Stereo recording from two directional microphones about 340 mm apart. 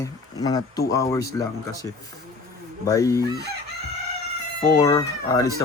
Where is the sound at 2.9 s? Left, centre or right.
Centre.